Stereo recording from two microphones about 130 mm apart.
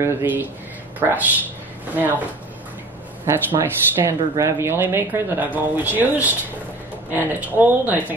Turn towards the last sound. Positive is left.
turn(degrees=-15)  # may be behind; listen again after turning